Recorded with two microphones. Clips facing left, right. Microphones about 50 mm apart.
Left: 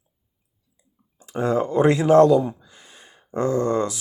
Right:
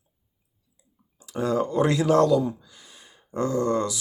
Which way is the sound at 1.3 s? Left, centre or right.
Left.